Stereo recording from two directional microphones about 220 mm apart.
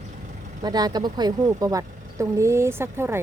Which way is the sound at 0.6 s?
20° right (ahead or behind).